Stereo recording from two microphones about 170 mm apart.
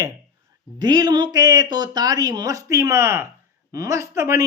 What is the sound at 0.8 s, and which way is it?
Speech, 25° right (ahead or behind).